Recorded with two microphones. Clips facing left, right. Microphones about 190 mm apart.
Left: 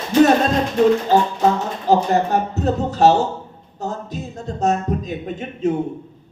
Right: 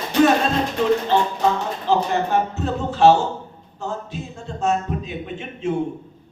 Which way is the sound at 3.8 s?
40° left (ahead or behind).